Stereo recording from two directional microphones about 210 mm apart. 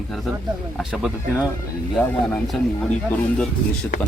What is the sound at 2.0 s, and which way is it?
Speech, 10° left (ahead or behind).